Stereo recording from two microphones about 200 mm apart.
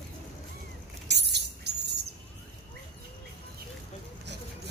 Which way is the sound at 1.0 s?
55° right (ahead or behind).